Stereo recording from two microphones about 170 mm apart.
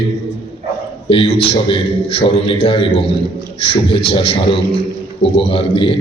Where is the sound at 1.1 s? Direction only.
30° left (ahead or behind).